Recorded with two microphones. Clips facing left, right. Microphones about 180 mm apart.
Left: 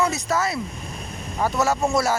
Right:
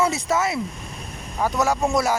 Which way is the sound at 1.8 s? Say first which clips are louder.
Even; centre (ahead or behind).